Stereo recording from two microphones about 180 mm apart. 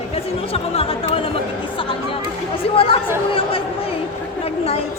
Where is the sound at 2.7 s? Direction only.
30° left (ahead or behind).